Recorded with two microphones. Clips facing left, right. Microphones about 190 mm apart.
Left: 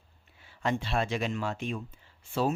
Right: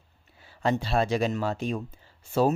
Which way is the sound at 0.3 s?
35° right (ahead or behind).